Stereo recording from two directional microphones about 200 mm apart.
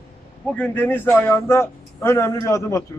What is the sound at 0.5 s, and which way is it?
Speech, 5° left (ahead or behind).